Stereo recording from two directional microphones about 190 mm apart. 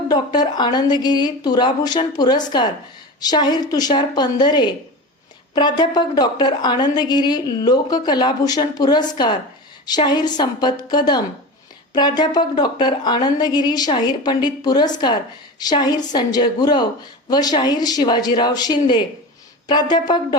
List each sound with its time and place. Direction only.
0.1 s a woman's voice: 20° left (ahead or behind)